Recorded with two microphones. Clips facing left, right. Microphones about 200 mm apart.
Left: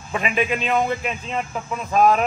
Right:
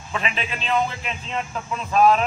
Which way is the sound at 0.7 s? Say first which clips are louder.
Left 2 dB; 15° left (ahead or behind).